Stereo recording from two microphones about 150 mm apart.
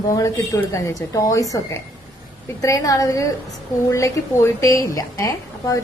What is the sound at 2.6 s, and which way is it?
A woman's voice, 20° left (ahead or behind).